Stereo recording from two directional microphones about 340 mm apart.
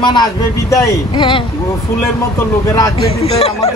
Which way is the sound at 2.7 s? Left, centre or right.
Centre.